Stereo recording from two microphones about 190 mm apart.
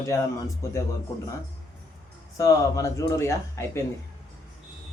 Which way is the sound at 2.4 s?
15° left (ahead or behind).